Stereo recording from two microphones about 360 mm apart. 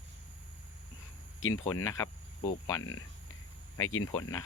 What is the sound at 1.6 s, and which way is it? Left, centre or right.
Speech, centre.